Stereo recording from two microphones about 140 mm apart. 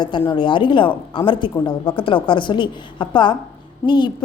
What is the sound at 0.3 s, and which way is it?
A woman's voice, 35° left (ahead or behind).